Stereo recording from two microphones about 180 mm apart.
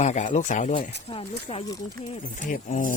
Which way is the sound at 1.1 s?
30° left (ahead or behind).